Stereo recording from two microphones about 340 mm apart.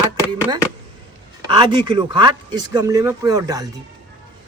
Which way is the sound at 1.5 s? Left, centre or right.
Centre.